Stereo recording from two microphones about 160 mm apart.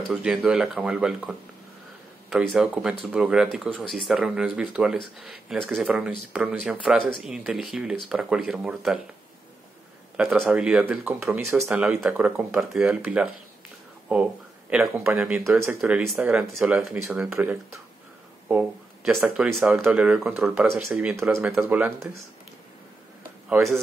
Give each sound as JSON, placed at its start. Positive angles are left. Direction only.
{"t": 0.1, "sound": "speech", "side_deg": -5}
{"t": 10.1, "sound": "speech", "side_deg": 0}
{"t": 21.1, "sound": "speech", "side_deg": -15}
{"t": 23.5, "sound": "speech", "side_deg": -15}